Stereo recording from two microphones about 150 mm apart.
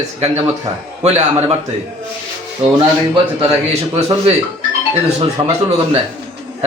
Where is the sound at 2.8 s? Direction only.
35° right (ahead or behind).